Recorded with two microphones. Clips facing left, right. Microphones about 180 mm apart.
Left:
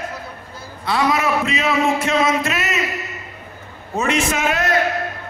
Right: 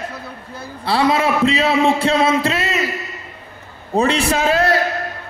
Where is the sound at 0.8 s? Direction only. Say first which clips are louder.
Right 3 dB; 30° right (ahead or behind).